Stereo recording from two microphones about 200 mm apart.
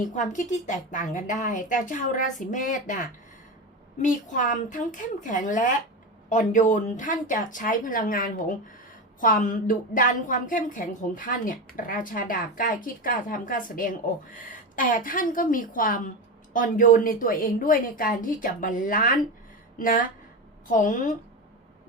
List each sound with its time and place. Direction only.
0.1 s speech: 40° left (ahead or behind)